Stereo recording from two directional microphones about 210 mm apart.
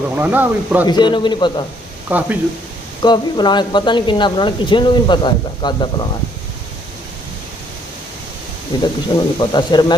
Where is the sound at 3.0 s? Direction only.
20° left (ahead or behind).